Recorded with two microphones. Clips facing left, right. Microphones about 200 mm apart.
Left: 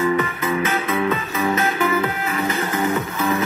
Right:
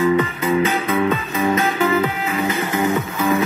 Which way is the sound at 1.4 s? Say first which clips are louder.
Right 3 dB; 25° right (ahead or behind).